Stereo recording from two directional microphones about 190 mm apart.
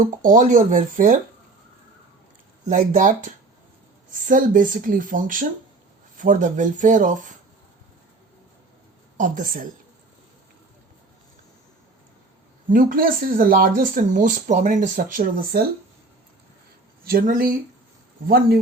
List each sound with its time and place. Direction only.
0.0 s speech: 45° right (ahead or behind)
2.6 s speech: 40° right (ahead or behind)
9.1 s speech: 45° right (ahead or behind)
12.7 s speech: 45° right (ahead or behind)
17.1 s speech: 50° right (ahead or behind)